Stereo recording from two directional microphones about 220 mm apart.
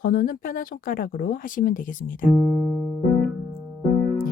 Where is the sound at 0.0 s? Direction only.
40° left (ahead or behind).